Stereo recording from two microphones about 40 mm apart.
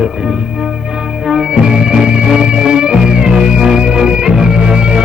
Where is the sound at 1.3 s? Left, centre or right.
Right.